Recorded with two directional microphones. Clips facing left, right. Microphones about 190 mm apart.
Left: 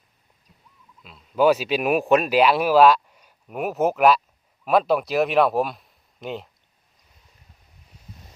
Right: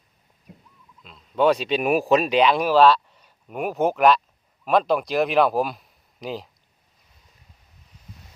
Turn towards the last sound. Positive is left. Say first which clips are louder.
# even
turn(degrees=0)  # may be behind; listen again after turning